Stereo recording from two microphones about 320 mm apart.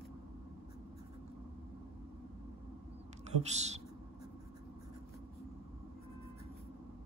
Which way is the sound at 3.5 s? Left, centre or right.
Right.